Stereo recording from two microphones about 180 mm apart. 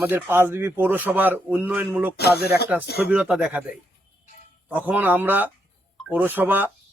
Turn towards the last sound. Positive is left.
turn(degrees=-10)  # may be behind; listen again after turning